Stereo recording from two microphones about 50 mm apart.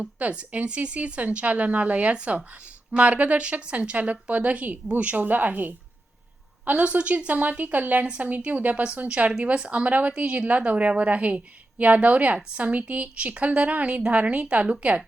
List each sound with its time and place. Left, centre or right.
0.0 s a woman's voice: right